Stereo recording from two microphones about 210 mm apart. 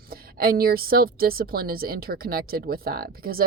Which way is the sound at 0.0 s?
45° right (ahead or behind).